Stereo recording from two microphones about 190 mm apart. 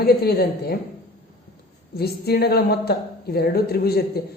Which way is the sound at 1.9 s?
55° left (ahead or behind).